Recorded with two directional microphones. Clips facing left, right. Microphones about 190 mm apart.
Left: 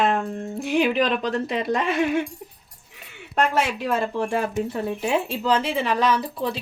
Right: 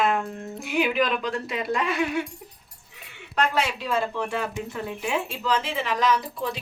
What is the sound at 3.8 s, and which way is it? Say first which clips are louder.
Speech: left 3 dB; 50° left (ahead or behind).